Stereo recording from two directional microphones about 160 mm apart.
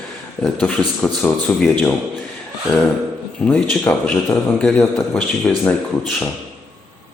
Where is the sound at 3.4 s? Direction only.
10° left (ahead or behind).